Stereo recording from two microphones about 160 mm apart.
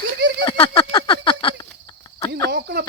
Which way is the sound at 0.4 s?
35° left (ahead or behind).